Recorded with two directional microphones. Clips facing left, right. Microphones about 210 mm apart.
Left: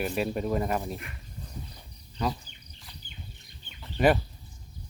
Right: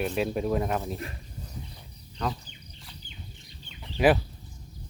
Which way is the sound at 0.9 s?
35° right (ahead or behind).